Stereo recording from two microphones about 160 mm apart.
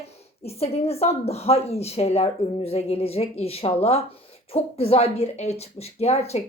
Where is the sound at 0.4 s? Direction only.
40° left (ahead or behind).